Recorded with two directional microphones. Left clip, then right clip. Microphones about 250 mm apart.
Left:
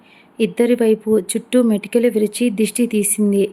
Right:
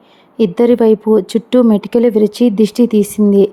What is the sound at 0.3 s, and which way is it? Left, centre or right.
Speech, centre.